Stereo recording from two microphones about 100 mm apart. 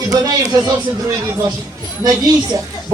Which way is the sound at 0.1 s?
35° right (ahead or behind).